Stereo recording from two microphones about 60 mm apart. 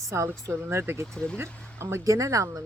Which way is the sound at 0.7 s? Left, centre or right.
Right.